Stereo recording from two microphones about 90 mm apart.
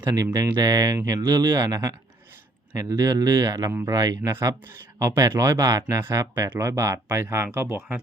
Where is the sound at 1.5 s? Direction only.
30° right (ahead or behind).